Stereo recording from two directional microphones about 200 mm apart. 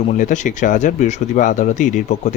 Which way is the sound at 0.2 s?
40° left (ahead or behind).